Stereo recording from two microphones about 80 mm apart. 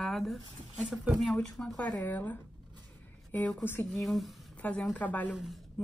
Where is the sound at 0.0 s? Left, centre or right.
Centre.